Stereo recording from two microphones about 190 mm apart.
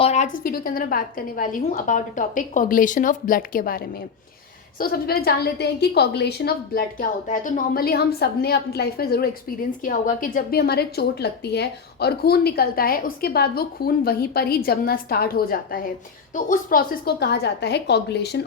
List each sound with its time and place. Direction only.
0.0 s a woman's voice: 35° left (ahead or behind); by 18.4 s 60° left (ahead or behind)